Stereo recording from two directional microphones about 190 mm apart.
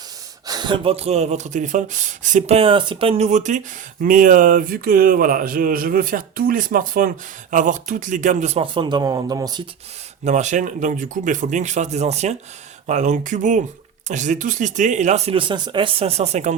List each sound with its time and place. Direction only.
0.4 s speech: 20° right (ahead or behind)
10.2 s speech: 40° right (ahead or behind)